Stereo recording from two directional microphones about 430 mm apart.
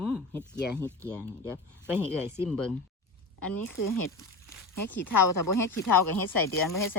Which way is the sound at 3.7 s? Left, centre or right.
Left.